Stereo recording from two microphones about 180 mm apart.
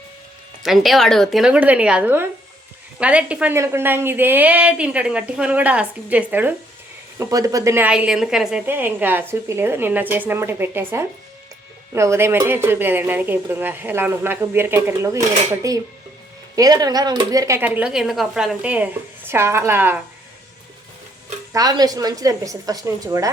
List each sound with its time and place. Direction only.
0.6 s a woman's voice: centre (ahead or behind)
21.5 s a woman's voice: 20° right (ahead or behind)